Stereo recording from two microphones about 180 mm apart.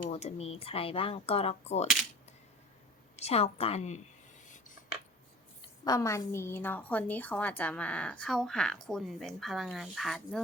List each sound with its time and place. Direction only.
0.1 s speech: 35° left (ahead or behind)
3.2 s speech: 35° left (ahead or behind)
4.4 s a sound: 45° left (ahead or behind)
5.6 s a woman's voice: 20° left (ahead or behind); by 10.4 s centre (ahead or behind)